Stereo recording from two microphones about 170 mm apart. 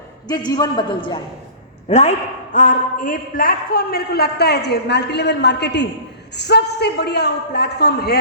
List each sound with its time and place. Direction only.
0.3 s a man's voice: 25° left (ahead or behind)
1.9 s a man's voice: 40° left (ahead or behind); by 5.9 s 90° left
6.3 s a man's voice: 80° left